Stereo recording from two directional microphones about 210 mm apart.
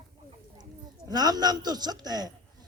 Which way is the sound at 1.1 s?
20° right (ahead or behind).